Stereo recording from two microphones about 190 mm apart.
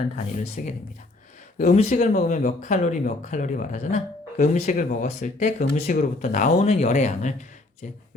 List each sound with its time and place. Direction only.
0.6 s speech: 45° left (ahead or behind)
1.7 s speech: 35° left (ahead or behind)